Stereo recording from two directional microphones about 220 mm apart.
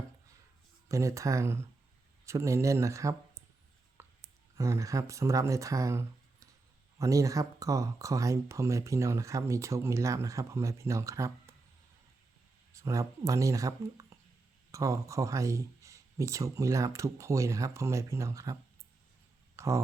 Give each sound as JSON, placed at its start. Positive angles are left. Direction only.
{"t": 0.9, "sound": "speech", "side_deg": -15}
{"t": 4.0, "sound": "a sound", "side_deg": -10}
{"t": 4.5, "sound": "speech", "side_deg": -15}
{"t": 12.7, "sound": "speech", "side_deg": -15}
{"t": 19.5, "sound": "speech", "side_deg": -15}